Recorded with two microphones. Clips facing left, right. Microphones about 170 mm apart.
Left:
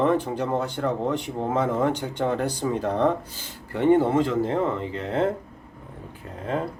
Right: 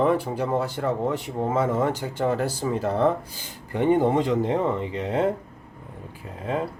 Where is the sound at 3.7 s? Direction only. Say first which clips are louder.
Left 1 dB; 15° right (ahead or behind).